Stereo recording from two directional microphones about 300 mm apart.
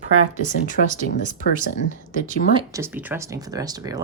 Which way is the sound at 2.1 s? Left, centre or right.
Left.